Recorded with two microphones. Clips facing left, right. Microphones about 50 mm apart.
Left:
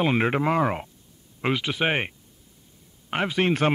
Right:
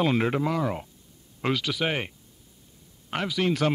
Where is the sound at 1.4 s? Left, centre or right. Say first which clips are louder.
Left 2 dB; left.